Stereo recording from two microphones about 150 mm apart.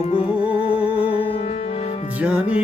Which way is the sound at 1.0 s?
35° left (ahead or behind).